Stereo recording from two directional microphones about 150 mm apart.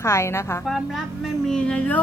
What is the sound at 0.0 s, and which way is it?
Music, 20° left (ahead or behind).